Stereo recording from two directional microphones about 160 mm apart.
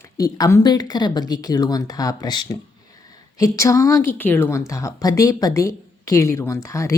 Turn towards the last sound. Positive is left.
turn(degrees=20)  # may be behind; listen again after turning